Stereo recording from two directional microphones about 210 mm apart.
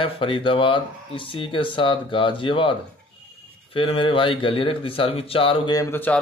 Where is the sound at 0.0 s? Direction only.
25° left (ahead or behind).